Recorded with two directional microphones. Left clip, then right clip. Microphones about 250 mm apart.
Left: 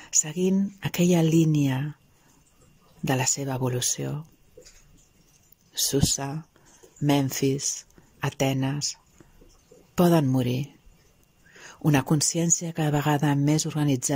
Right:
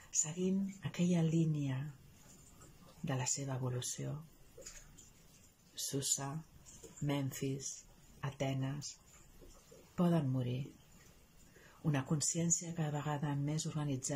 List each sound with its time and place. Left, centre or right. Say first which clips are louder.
0.1 s speech: left 13 dB; left
3.1 s speech: left 14 dB; left
5.9 s speech: left 12 dB; left
9.9 s speech: left 15 dB; left
11.8 s speech: left 15 dB; left